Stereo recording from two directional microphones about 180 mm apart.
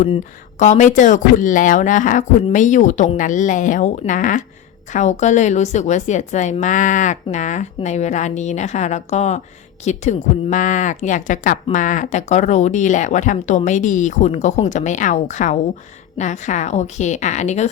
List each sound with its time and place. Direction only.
0.6 s a woman's voice: 40° left (ahead or behind)